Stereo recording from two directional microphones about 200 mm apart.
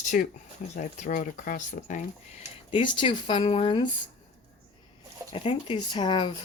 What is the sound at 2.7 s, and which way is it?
Speech, 25° left (ahead or behind).